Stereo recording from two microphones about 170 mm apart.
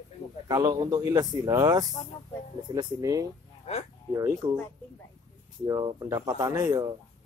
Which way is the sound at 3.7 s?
40° left (ahead or behind).